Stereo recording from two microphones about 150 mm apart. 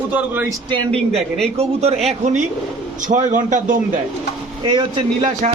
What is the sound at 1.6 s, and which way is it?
Speech, 45° right (ahead or behind).